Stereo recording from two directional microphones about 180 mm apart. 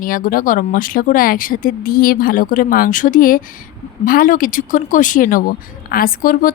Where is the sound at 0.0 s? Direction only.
50° left (ahead or behind).